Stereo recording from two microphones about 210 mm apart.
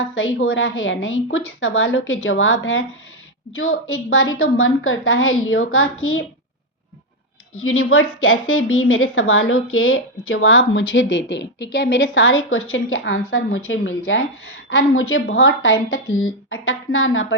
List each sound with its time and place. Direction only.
0.0 s a woman's voice: 70° left (ahead or behind)
7.6 s a woman's voice: 80° left